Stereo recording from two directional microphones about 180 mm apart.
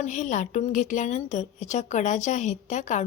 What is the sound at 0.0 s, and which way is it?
Speech, 45° left (ahead or behind).